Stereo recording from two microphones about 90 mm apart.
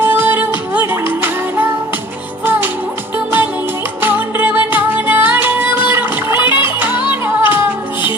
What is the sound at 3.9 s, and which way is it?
Music, 25° right (ahead or behind).